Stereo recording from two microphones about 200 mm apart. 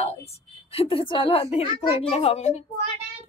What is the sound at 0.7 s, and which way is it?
A woman's voice, 25° left (ahead or behind).